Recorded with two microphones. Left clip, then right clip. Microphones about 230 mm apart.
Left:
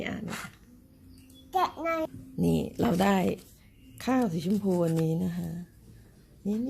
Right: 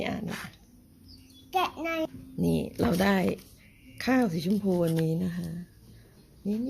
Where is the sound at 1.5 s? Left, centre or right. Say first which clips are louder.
Left 1 dB; centre.